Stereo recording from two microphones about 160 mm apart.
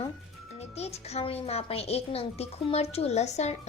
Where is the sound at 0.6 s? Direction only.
40° left (ahead or behind).